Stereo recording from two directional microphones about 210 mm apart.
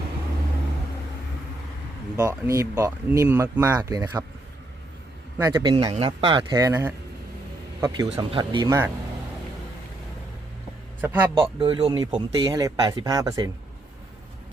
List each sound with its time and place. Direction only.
2.1 s speech: 15° right (ahead or behind)
5.4 s speech: 20° right (ahead or behind)
8.1 s speech: 25° right (ahead or behind)
11.0 s speech: 10° right (ahead or behind)
11.6 s speech: 25° right (ahead or behind)